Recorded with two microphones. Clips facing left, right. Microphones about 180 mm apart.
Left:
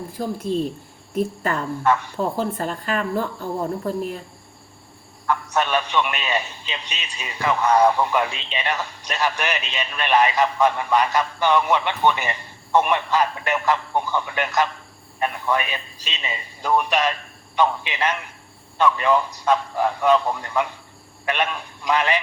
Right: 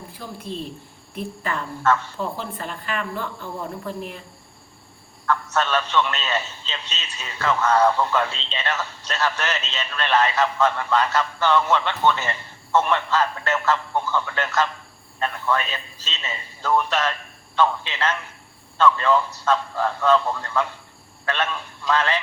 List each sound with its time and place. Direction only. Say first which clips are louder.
0.2 s speech: left 9 dB; 45° left (ahead or behind)
1.8 s a man's voice: even; 15° left (ahead or behind)
2.1 s speech: left 6 dB; 40° left (ahead or behind)
5.2 s a man's voice: left 1 dB; 15° left (ahead or behind)